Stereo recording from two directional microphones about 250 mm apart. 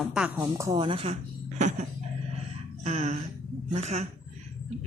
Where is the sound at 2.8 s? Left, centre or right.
Right.